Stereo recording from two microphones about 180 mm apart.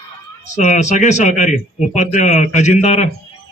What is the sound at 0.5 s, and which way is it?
A man's voice, 40° left (ahead or behind).